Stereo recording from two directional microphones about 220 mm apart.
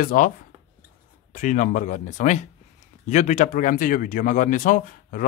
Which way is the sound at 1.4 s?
35° left (ahead or behind).